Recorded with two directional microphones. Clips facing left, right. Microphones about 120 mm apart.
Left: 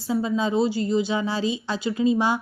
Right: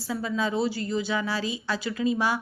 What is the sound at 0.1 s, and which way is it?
Speech, 25° left (ahead or behind).